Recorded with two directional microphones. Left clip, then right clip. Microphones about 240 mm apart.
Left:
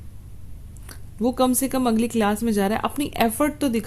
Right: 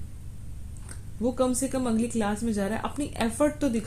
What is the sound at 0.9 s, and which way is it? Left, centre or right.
A woman's voice, left.